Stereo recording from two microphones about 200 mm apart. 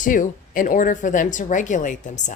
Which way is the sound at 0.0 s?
40° left (ahead or behind).